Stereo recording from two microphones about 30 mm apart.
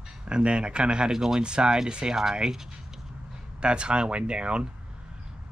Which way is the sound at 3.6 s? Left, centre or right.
Right.